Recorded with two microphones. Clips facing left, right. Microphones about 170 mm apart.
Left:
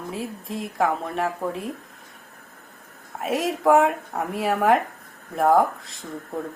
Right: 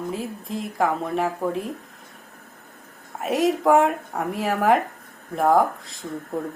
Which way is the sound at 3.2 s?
Centre (ahead or behind).